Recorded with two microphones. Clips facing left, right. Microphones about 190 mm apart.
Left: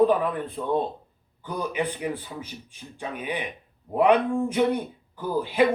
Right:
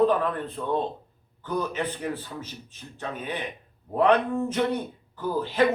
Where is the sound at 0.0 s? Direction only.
10° left (ahead or behind).